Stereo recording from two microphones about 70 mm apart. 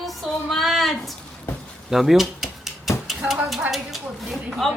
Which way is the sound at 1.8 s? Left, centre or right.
Centre.